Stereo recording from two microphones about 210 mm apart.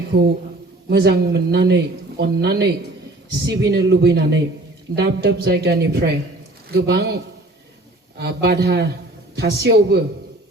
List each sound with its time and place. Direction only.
0.1 s speech: 50° right (ahead or behind)
8.2 s speech: 50° right (ahead or behind)